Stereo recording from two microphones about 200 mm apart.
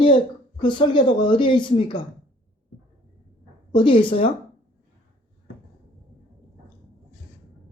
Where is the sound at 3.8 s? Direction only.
25° left (ahead or behind).